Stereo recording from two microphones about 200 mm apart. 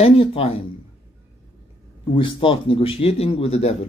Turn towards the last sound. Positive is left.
turn(degrees=30)  # may be behind; listen again after turning